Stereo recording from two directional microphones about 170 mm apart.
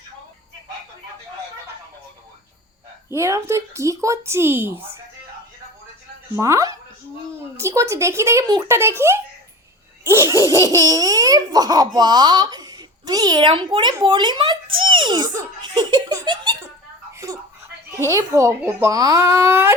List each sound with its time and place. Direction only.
3.1 s a woman's voice: 15° right (ahead or behind)
6.3 s a woman's voice: 20° right (ahead or behind)
18.1 s a woman's voice: 20° right (ahead or behind)